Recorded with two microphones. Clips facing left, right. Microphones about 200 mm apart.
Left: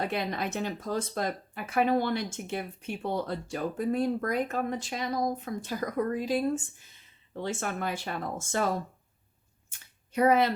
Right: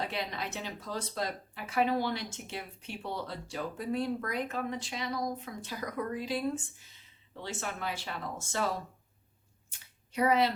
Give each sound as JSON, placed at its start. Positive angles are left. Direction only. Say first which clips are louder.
{"t": 0.0, "sound": "speech", "louder": "left 5 dB", "side_deg": 50}
{"t": 10.1, "sound": "speech", "louder": "left 4 dB", "side_deg": 50}